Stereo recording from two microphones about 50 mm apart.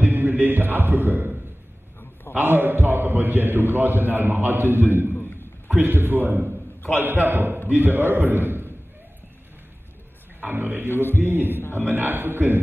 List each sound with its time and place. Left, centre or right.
0.0 s a man's voice: right
10.4 s a man's voice: right
10.9 s a man's voice: left
11.1 s a man's voice: right